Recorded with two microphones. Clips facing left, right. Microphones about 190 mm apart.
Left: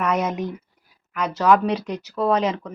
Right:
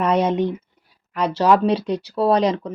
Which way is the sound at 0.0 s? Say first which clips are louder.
Right 5 dB; 30° right (ahead or behind).